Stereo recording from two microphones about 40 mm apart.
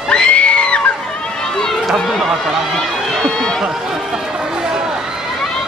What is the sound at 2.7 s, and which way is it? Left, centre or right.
Run, left.